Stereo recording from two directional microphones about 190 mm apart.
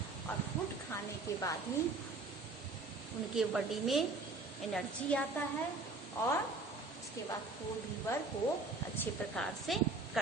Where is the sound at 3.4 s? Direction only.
Centre (ahead or behind).